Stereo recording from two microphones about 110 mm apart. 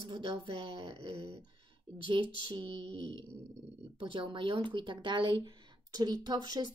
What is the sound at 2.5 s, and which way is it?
A woman's voice, 55° right (ahead or behind).